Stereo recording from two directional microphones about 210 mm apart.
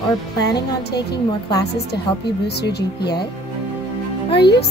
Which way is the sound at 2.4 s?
50° left (ahead or behind).